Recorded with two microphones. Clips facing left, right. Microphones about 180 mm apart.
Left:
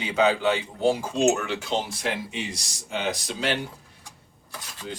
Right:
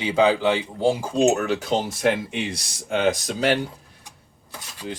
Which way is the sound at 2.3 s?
60° right (ahead or behind).